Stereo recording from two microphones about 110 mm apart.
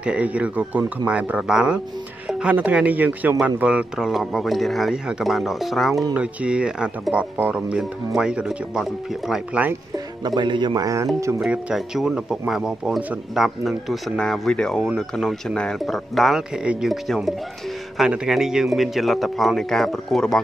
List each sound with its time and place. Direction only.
0.0 s speech: 10° right (ahead or behind)
6.1 s speech: 10° right (ahead or behind)
9.9 s speech: 40° right (ahead or behind)
11.4 s speech: 5° right (ahead or behind)